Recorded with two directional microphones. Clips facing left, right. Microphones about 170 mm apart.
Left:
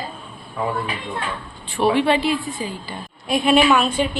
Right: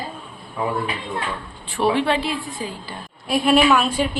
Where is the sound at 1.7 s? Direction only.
Centre (ahead or behind).